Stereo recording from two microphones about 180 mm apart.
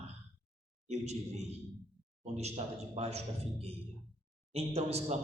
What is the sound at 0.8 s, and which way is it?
A man's voice, 40° right (ahead or behind).